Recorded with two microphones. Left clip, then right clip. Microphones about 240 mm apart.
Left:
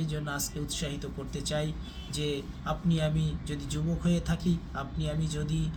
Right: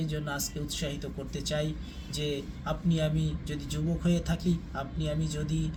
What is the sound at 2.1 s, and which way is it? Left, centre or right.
Speech, centre.